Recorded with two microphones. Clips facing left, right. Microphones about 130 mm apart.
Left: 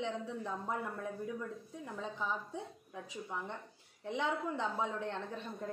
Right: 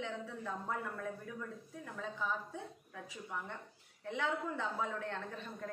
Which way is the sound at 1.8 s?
20° left (ahead or behind).